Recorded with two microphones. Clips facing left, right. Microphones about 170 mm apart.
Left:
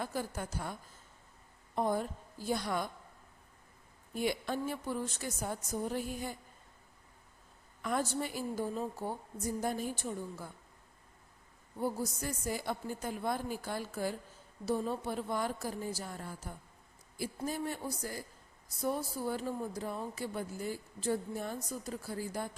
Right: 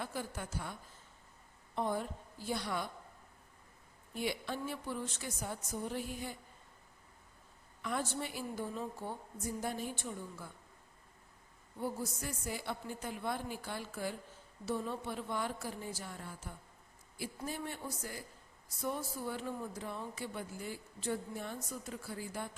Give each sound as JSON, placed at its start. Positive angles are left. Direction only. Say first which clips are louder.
{"t": 0.0, "sound": "a woman's voice", "louder": "left 4 dB", "side_deg": 40}
{"t": 4.1, "sound": "a woman's voice", "louder": "left 4 dB", "side_deg": 45}
{"t": 7.8, "sound": "speech", "louder": "left 4 dB", "side_deg": 45}
{"t": 11.8, "sound": "speech", "louder": "left 4 dB", "side_deg": 40}